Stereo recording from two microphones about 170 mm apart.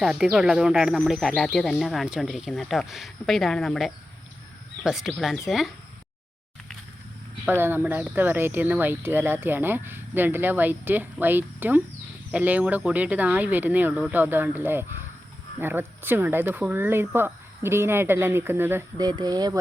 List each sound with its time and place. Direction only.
0.0 s speech: 5° right (ahead or behind)
7.4 s speech: 10° right (ahead or behind)
19.0 s speech: 25° right (ahead or behind)